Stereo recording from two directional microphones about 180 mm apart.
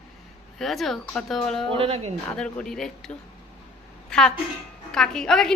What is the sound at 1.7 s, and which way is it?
Speech, 30° right (ahead or behind).